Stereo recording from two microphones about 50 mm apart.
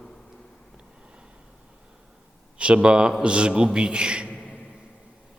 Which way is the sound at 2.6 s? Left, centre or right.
Right.